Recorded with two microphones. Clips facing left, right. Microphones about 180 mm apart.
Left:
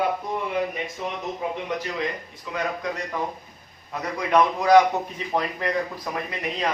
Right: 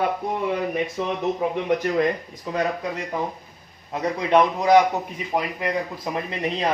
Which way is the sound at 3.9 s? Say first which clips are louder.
Right 3 dB; 25° right (ahead or behind).